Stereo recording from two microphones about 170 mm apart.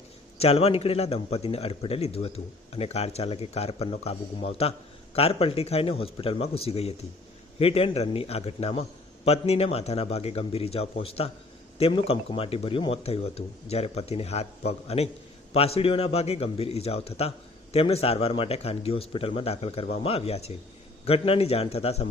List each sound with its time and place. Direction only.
0.3 s a man's voice: 35° left (ahead or behind)